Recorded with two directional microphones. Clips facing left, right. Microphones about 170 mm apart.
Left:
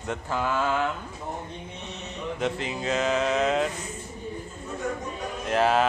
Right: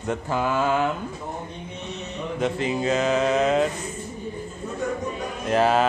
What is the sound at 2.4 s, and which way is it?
Mantra, 5° right (ahead or behind).